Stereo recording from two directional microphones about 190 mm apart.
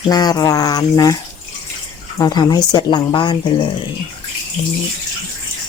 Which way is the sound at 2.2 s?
20° left (ahead or behind).